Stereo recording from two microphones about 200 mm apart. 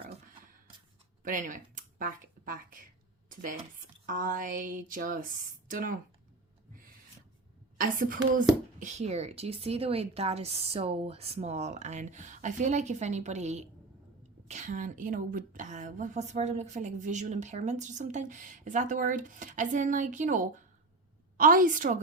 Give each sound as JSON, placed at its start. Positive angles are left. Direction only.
{"t": 1.2, "sound": "a sound", "side_deg": -40}
{"t": 4.0, "sound": "speech", "side_deg": -45}
{"t": 7.8, "sound": "speech", "side_deg": -45}